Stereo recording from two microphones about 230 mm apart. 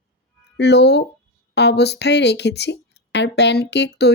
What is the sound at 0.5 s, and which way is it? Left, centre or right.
Speech, left.